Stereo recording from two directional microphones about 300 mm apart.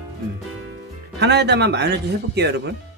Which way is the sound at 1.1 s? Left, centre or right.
Right.